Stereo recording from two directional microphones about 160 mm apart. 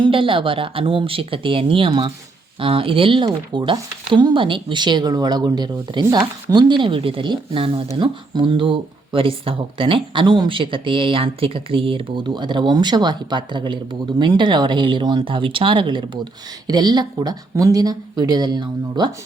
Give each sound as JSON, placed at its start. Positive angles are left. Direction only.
{"t": 0.0, "sound": "speech", "side_deg": -35}